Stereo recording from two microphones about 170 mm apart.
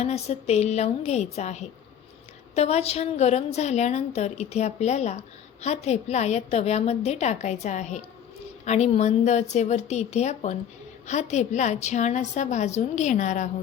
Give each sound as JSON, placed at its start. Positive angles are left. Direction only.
{"t": 0.0, "sound": "a woman's voice", "side_deg": 40}